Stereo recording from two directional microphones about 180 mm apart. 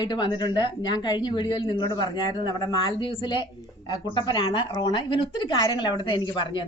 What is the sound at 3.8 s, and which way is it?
A woman's voice, 25° left (ahead or behind).